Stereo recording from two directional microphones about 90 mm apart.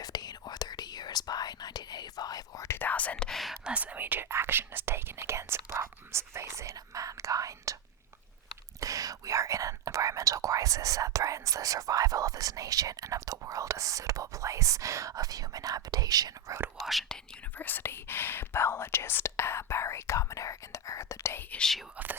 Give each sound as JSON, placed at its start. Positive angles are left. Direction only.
{"t": 0.0, "sound": "whispering", "side_deg": 45}
{"t": 2.6, "sound": "whispering", "side_deg": 20}
{"t": 8.8, "sound": "whispering", "side_deg": -40}
{"t": 16.7, "sound": "whispering", "side_deg": 0}
{"t": 17.6, "sound": "whispering", "side_deg": 20}
{"t": 21.5, "sound": "whispering", "side_deg": 5}
{"t": 21.9, "sound": "whispering", "side_deg": -20}